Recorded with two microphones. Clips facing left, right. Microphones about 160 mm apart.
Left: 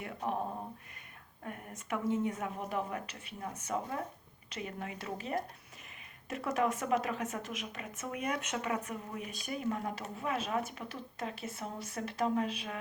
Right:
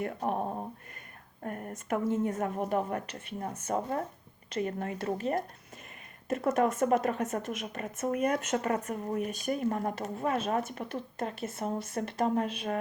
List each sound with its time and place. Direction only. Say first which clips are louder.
0.0 s a woman's voice: right 5 dB; 45° right (ahead or behind)
1.4 s a woman's voice: right 7 dB; 45° right (ahead or behind)